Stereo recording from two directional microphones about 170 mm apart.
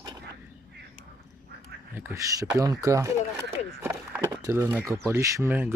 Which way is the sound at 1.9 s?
15° right (ahead or behind).